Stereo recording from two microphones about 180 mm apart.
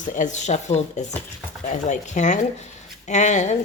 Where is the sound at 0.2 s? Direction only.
40° left (ahead or behind).